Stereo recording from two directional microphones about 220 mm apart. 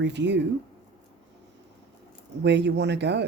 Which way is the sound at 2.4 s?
50° right (ahead or behind).